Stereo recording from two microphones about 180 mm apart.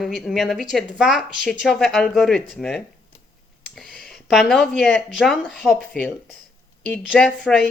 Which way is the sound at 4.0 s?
Centre (ahead or behind).